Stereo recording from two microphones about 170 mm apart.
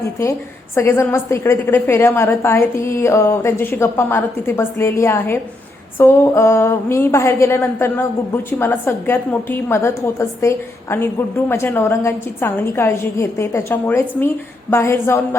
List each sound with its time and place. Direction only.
0.0 s a woman's voice: 15° left (ahead or behind)